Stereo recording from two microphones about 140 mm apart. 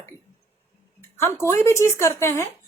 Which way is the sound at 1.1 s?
20° left (ahead or behind).